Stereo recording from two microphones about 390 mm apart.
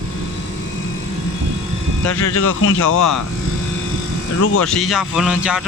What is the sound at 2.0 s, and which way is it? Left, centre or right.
Speech, left.